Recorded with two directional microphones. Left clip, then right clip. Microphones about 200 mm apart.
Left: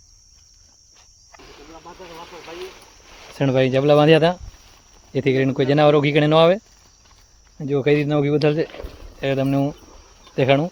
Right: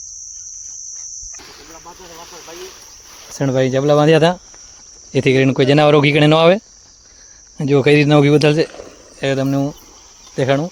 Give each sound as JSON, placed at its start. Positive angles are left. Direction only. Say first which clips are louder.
{"t": 1.7, "sound": "speech", "louder": "left 1 dB", "side_deg": -10}
{"t": 7.6, "sound": "speech", "louder": "right 6 dB", "side_deg": -40}
{"t": 9.2, "sound": "speech", "louder": "right 3 dB", "side_deg": -20}